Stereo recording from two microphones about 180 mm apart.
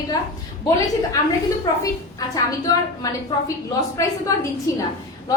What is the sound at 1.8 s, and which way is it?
A woman's voice, 20° left (ahead or behind).